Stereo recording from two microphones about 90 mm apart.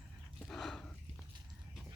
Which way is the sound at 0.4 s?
5° left (ahead or behind).